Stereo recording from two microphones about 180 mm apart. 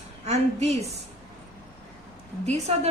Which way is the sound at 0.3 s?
35° right (ahead or behind).